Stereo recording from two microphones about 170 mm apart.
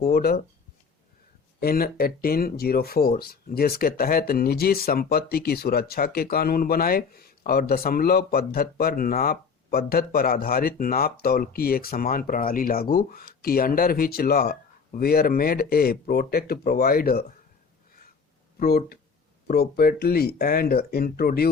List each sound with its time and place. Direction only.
0.0 s speech: 65° left (ahead or behind)
1.6 s speech: 60° left (ahead or behind)
18.6 s speech: 60° left (ahead or behind)